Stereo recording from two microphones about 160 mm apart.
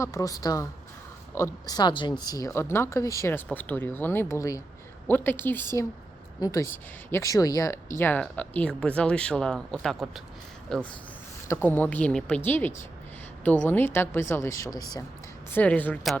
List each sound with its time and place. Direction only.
0.0 s speech: 20° left (ahead or behind); by 10.8 s 5° left (ahead or behind)
11.4 s speech: 15° left (ahead or behind)
15.5 s speech: 10° left (ahead or behind)